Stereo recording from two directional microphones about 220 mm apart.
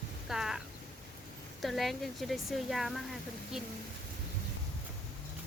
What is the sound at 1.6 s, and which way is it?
Speech, centre (ahead or behind).